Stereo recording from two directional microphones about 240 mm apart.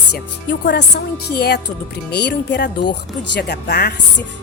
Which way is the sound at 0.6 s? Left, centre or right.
Left.